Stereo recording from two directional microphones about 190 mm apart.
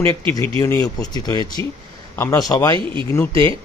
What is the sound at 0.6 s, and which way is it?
Speech, 15° left (ahead or behind).